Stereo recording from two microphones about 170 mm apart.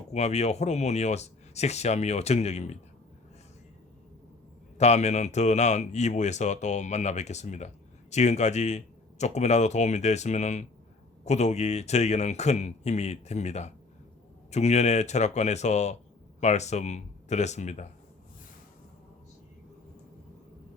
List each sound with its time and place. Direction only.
0.1 s speech: 40° left (ahead or behind)
4.8 s speech: 40° left (ahead or behind)